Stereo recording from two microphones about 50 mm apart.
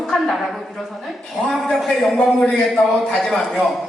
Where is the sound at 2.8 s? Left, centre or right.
Left.